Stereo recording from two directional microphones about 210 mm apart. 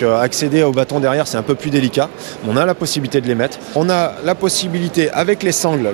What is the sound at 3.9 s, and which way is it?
Speech, 15° right (ahead or behind).